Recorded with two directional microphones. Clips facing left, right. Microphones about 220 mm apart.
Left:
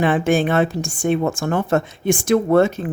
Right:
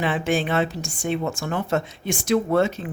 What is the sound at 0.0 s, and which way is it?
A woman's voice, 50° left (ahead or behind).